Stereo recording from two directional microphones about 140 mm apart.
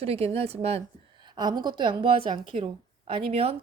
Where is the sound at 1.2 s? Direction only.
30° right (ahead or behind).